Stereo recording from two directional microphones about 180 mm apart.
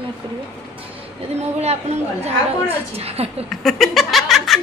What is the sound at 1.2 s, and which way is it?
Speech, 35° right (ahead or behind).